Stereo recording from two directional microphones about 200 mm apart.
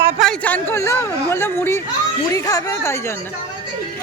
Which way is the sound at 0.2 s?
5° left (ahead or behind).